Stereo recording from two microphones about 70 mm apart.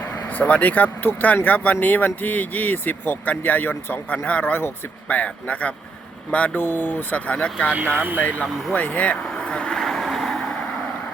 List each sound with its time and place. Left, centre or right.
0.3 s speech: left
7.9 s speech: right
8.2 s speech: left
8.7 s vehicle: left